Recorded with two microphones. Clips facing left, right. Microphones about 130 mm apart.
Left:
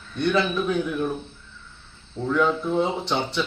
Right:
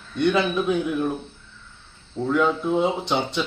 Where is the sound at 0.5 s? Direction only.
15° right (ahead or behind).